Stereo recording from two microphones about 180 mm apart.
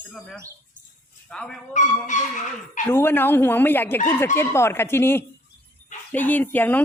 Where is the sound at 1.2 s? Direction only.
5° left (ahead or behind).